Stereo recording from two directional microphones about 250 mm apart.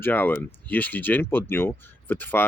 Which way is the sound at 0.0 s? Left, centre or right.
Centre.